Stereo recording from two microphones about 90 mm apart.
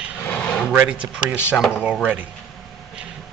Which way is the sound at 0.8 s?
10° right (ahead or behind).